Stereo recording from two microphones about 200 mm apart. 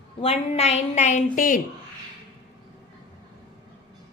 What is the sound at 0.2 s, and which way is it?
A woman's voice, 30° left (ahead or behind).